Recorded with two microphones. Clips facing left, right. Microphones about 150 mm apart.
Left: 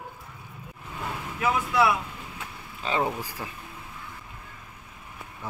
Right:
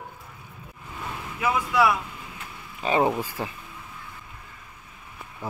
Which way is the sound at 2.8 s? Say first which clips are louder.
Right 5 dB; 20° right (ahead or behind).